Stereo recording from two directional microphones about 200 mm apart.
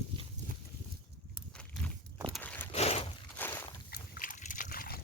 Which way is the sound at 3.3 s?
10° left (ahead or behind).